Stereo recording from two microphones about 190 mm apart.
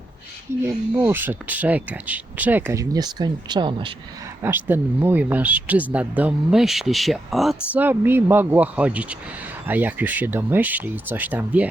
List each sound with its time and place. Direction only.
0.6 s speech: 10° right (ahead or behind)
4.4 s speech: 10° right (ahead or behind)